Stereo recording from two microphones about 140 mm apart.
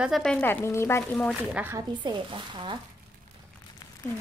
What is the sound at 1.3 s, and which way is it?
Speech, centre (ahead or behind).